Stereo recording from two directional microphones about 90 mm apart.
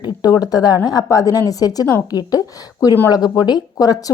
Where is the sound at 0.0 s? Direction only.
50° left (ahead or behind).